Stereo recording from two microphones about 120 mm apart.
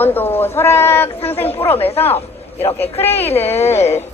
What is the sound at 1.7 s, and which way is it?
A man's voice, 55° left (ahead or behind).